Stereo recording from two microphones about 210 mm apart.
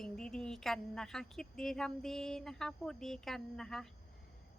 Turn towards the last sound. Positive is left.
turn(degrees=0)  # may be behind; listen again after turning